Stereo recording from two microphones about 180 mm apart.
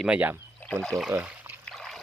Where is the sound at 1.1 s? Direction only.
10° right (ahead or behind).